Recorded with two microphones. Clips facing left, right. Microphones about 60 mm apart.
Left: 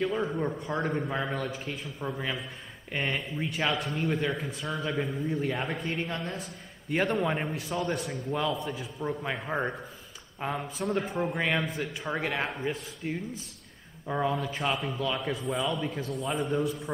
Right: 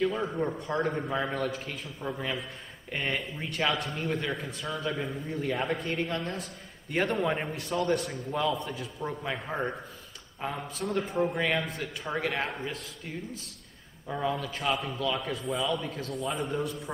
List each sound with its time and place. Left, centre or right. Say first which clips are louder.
0.0 s a man's voice: even; centre
14.4 s a man's voice: even; centre